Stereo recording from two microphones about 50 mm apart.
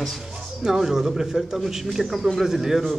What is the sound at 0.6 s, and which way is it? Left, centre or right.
A man's voice, centre.